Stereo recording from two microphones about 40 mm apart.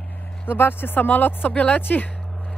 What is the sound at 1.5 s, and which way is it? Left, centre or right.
Speech, left.